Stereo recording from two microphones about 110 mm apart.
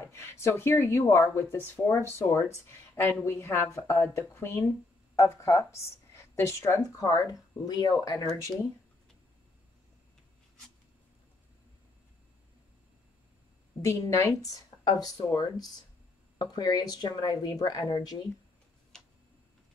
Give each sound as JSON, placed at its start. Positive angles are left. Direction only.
{"t": 0.0, "sound": "speech", "side_deg": 25}
{"t": 13.7, "sound": "speech", "side_deg": 30}